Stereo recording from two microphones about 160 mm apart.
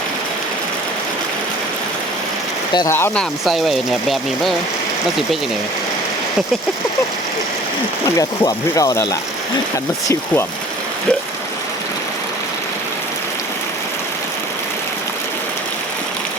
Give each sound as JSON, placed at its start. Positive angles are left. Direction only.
{"t": 2.7, "sound": "speech", "side_deg": 20}
{"t": 3.4, "sound": "speech", "side_deg": 0}
{"t": 8.0, "sound": "speech", "side_deg": 25}